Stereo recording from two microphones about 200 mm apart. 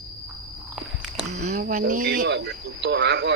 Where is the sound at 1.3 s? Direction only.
35° right (ahead or behind).